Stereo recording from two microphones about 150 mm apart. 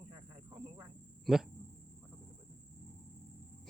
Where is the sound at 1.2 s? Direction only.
Centre (ahead or behind).